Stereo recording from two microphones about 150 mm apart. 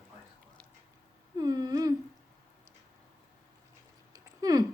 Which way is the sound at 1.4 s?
25° right (ahead or behind).